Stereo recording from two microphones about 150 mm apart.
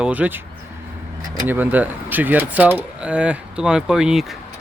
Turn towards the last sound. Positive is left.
turn(degrees=0)  # may be behind; listen again after turning